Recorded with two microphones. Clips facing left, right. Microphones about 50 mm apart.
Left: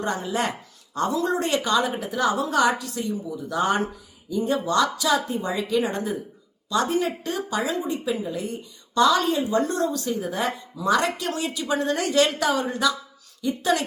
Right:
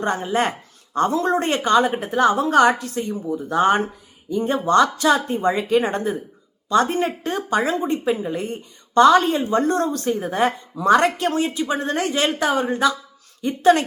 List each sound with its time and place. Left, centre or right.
0.0 s a woman's voice: right